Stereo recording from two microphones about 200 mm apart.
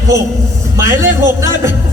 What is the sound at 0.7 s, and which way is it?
Speech, 15° right (ahead or behind).